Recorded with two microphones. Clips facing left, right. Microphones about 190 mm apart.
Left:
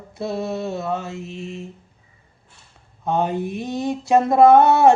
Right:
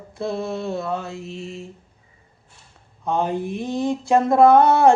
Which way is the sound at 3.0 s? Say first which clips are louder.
Left 1 dB; centre (ahead or behind).